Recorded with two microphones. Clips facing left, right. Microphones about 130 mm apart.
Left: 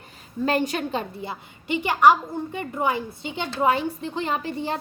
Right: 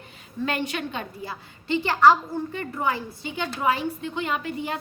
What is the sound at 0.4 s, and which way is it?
Speech, 40° left (ahead or behind).